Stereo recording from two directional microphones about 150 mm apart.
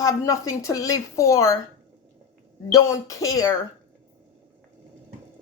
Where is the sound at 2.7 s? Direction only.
20° left (ahead or behind).